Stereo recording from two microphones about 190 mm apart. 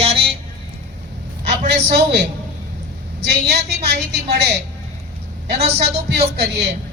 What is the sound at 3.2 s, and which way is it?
A woman's voice, 60° right (ahead or behind).